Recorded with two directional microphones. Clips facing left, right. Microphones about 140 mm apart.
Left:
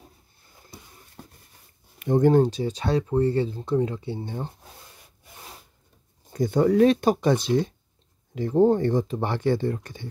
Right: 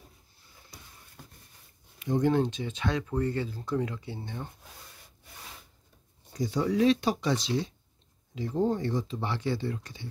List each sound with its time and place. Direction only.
2.0 s speech: 55° left (ahead or behind); by 4.5 s 30° left (ahead or behind)
6.3 s speech: 55° left (ahead or behind)